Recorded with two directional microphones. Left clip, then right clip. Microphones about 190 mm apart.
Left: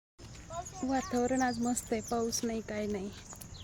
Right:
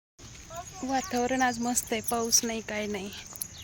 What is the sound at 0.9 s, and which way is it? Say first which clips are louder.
Speech: right 4 dB; 5° left (ahead or behind).